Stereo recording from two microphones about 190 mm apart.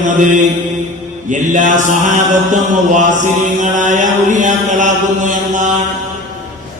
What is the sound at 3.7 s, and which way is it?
Mantra, 40° right (ahead or behind).